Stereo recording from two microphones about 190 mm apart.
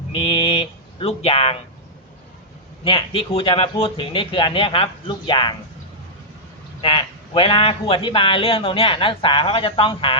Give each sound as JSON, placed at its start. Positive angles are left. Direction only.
{"t": 0.1, "sound": "speech", "side_deg": 30}
{"t": 2.8, "sound": "speech", "side_deg": 30}
{"t": 6.8, "sound": "speech", "side_deg": 25}